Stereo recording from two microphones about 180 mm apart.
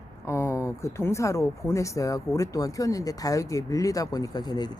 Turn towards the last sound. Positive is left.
turn(degrees=20)  # may be behind; listen again after turning